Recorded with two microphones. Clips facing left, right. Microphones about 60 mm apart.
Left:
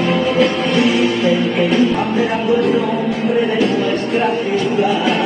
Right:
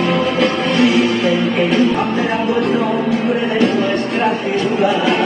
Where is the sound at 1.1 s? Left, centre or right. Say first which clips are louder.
Even; right.